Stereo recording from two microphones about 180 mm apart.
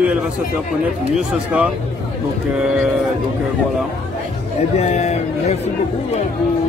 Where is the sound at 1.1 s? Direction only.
5° right (ahead or behind).